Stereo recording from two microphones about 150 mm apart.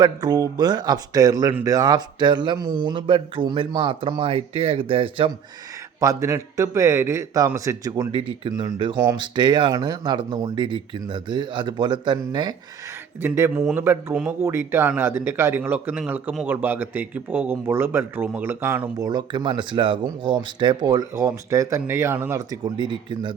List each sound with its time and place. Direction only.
0.0 s a man's voice: 25° right (ahead or behind)
6.0 s a man's voice: 20° right (ahead or behind)
13.2 s a man's voice: 15° right (ahead or behind)